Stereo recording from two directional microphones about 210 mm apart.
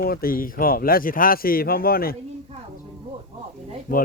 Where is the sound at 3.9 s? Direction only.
40° left (ahead or behind).